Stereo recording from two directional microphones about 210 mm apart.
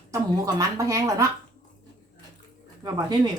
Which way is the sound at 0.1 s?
15° right (ahead or behind).